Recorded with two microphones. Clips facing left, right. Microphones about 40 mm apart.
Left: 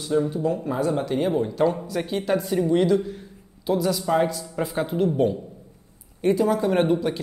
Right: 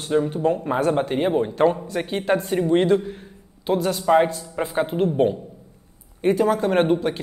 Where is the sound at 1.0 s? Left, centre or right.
Right.